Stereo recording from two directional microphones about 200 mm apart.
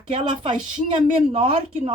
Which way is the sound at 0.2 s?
25° right (ahead or behind).